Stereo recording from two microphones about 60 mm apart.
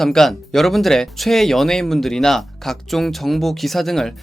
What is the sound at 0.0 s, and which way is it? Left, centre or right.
Speech, centre.